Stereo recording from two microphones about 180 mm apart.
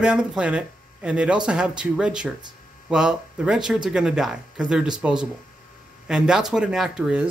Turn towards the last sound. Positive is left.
turn(degrees=-5)  # may be behind; listen again after turning